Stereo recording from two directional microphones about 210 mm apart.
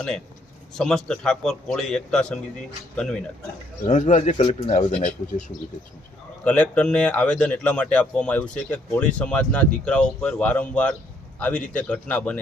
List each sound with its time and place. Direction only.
0.7 s speech: centre (ahead or behind)
3.8 s speech: 35° left (ahead or behind)
6.4 s speech: 5° left (ahead or behind)